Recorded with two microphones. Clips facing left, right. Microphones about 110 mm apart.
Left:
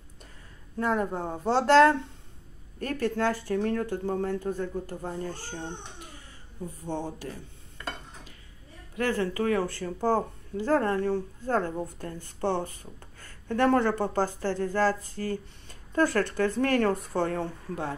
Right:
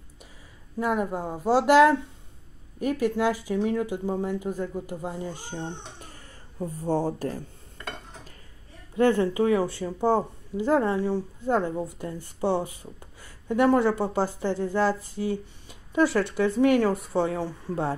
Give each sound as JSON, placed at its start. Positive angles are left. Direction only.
{"t": 0.7, "sound": "speech", "side_deg": -10}
{"t": 6.6, "sound": "speech", "side_deg": -40}
{"t": 8.9, "sound": "speech", "side_deg": -25}